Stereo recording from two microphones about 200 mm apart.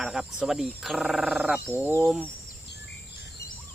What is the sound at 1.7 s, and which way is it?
Speech, 10° right (ahead or behind).